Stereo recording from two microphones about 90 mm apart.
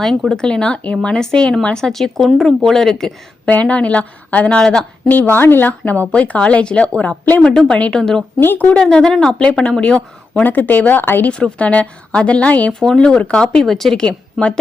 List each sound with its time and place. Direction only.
0.0 s a woman's voice: 5° left (ahead or behind)
5.0 s a woman's voice: 20° left (ahead or behind)
8.4 s speech: 25° left (ahead or behind)
8.7 s a woman's voice: 5° left (ahead or behind); by 11.3 s 20° left (ahead or behind)
11.3 s a woman's voice: 10° left (ahead or behind)